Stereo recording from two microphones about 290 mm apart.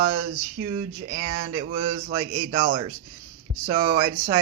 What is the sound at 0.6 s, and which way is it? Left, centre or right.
Speech, right.